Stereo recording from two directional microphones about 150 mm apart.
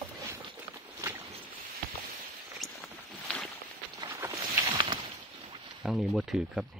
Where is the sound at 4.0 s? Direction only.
20° right (ahead or behind).